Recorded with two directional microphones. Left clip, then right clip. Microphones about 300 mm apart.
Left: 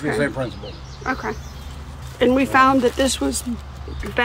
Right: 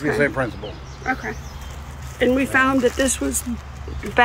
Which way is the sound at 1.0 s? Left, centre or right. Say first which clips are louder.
Even; centre.